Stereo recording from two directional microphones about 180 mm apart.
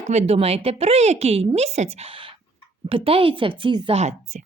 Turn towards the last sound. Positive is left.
turn(degrees=-40)  # may be behind; listen again after turning